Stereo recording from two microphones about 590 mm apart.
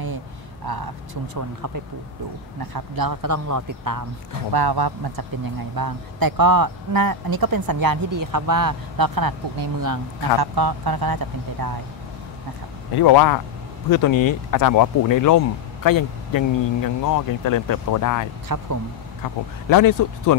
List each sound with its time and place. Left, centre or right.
0.7 s speech: right
12.9 s speech: left
18.5 s speech: right
19.7 s speech: left